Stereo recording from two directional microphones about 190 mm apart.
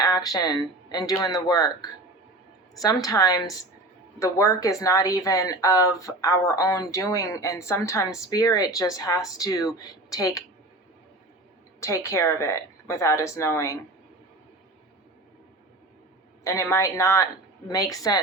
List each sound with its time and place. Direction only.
0.0 s speech: 20° left (ahead or behind)
11.8 s speech: 15° left (ahead or behind)
16.4 s speech: 15° left (ahead or behind)